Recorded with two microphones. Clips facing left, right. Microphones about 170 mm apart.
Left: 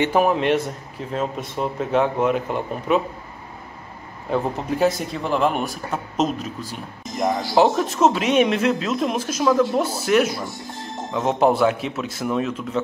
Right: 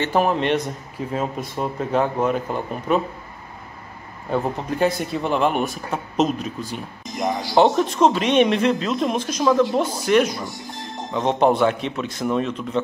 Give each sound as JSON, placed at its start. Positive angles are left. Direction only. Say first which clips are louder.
{"t": 0.0, "sound": "speech", "louder": "left 1 dB", "side_deg": 5}
{"t": 4.3, "sound": "speech", "louder": "even", "side_deg": 0}